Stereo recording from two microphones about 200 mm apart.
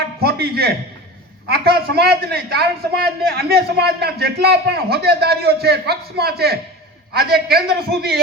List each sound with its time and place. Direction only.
0.2 s a man's voice: 50° right (ahead or behind)